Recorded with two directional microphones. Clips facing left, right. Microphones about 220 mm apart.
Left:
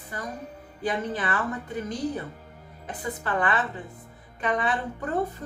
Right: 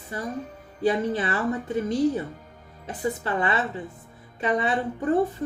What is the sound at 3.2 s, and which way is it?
A woman's voice, 25° right (ahead or behind).